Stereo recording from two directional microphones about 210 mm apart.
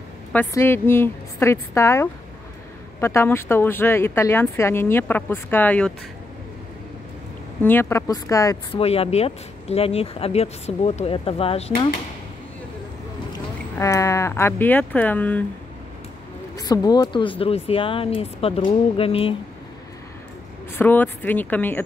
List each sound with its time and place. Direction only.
0.3 s speech: 10° left (ahead or behind)
7.6 s speech: 10° left (ahead or behind)
8.7 s speech: 30° left (ahead or behind)
13.7 s speech: 15° left (ahead or behind)
16.5 s speech: 15° left (ahead or behind)
20.7 s speech: 10° left (ahead or behind)